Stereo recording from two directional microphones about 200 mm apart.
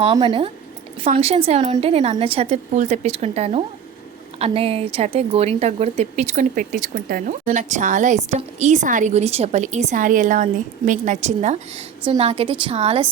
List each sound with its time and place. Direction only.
0.0 s a woman's voice: 25° right (ahead or behind)